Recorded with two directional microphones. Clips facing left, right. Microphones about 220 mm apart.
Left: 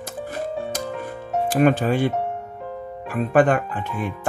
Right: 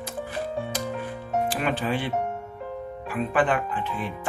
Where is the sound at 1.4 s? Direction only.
45° left (ahead or behind).